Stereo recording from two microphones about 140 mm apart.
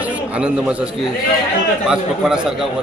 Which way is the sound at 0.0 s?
5° right (ahead or behind).